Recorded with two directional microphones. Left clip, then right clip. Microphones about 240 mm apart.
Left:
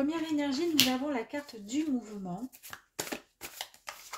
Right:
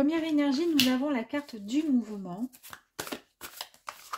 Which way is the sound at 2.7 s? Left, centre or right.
Centre.